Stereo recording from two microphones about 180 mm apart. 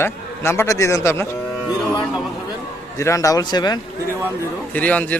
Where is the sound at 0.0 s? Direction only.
15° left (ahead or behind).